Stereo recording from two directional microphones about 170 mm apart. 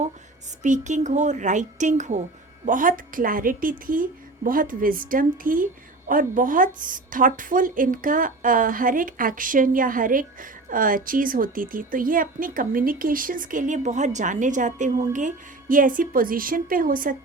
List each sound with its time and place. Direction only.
0.6 s a woman's voice: 45° right (ahead or behind)